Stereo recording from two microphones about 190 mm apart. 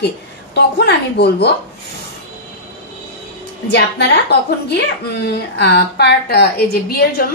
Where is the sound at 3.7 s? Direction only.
60° left (ahead or behind).